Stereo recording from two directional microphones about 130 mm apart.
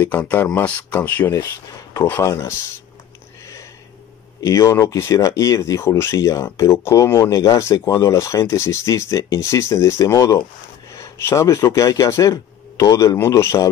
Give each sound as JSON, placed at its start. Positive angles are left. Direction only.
{"t": 0.0, "sound": "speech", "side_deg": 15}
{"t": 4.4, "sound": "speech", "side_deg": 25}